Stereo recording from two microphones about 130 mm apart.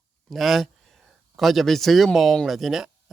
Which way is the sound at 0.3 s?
Centre (ahead or behind).